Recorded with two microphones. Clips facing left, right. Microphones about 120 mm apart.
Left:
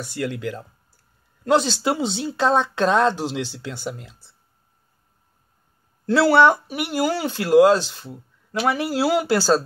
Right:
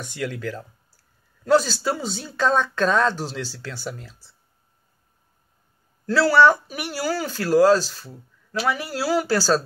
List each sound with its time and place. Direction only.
0.0 s speech: 10° left (ahead or behind)
6.0 s speech: 25° left (ahead or behind)